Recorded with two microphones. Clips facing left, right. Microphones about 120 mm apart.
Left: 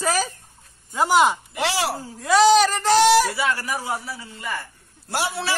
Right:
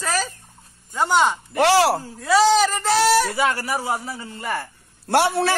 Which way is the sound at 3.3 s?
40° right (ahead or behind).